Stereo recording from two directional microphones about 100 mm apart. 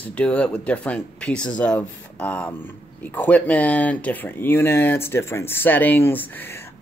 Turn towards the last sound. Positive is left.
turn(degrees=25)  # may be behind; listen again after turning